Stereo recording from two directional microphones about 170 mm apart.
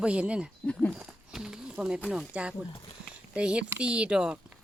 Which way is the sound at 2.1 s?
5° right (ahead or behind).